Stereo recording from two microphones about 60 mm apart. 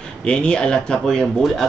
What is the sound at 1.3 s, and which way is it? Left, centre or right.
Speech, centre.